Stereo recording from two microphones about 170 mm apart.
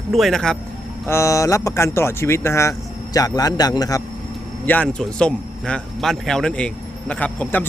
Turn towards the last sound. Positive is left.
turn(degrees=10)  # may be behind; listen again after turning